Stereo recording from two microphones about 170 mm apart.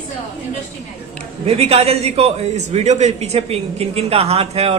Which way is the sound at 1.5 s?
35° right (ahead or behind).